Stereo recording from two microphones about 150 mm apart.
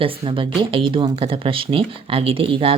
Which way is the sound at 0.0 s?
35° right (ahead or behind).